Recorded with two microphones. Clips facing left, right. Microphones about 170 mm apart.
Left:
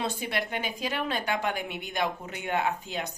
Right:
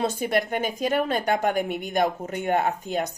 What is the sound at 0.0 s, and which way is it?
A woman's voice, 45° right (ahead or behind).